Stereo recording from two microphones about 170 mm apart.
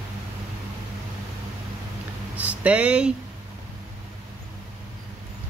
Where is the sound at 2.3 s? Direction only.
10° right (ahead or behind).